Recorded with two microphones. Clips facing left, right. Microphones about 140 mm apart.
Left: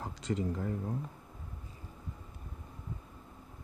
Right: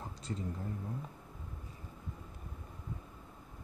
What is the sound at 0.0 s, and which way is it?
Speech, 90° left.